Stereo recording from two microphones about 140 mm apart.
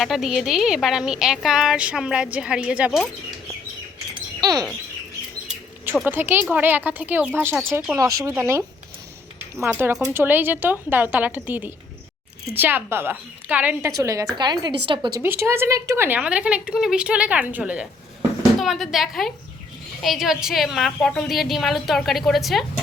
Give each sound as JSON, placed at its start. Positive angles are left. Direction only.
{"t": 0.0, "sound": "speech", "side_deg": 0}
{"t": 4.1, "sound": "bird", "side_deg": -30}
{"t": 6.1, "sound": "speech", "side_deg": -15}
{"t": 10.1, "sound": "speech", "side_deg": -15}
{"t": 13.9, "sound": "a woman's voice", "side_deg": -25}
{"t": 15.2, "sound": "speech", "side_deg": -15}